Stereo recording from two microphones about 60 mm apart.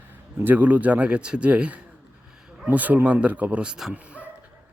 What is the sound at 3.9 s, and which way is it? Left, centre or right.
Dog, right.